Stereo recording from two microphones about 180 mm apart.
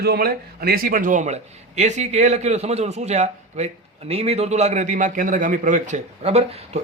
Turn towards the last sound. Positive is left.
turn(degrees=-35)  # may be behind; listen again after turning